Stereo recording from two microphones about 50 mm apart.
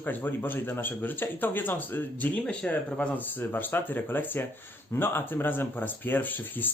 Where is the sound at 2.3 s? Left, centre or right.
Left.